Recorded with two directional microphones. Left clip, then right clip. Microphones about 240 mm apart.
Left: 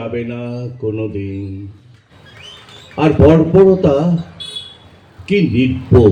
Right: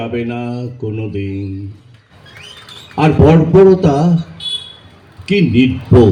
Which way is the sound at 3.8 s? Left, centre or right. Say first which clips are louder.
Left 1 dB; right.